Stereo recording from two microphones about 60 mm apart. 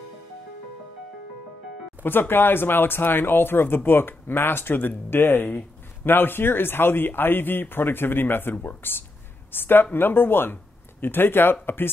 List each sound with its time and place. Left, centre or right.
2.0 s speech: left